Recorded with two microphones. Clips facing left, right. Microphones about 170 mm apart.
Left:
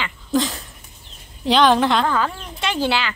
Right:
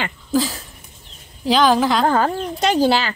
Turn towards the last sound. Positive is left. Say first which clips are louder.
# right 5 dB
turn(degrees=-40)  # may be behind; listen again after turning